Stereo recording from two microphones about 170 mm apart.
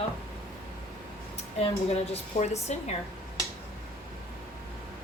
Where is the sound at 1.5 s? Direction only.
35° left (ahead or behind).